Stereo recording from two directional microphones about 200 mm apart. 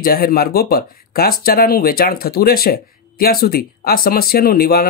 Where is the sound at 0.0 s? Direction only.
50° left (ahead or behind).